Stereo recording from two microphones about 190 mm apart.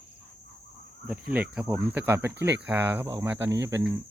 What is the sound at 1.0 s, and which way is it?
Speech, 5° right (ahead or behind).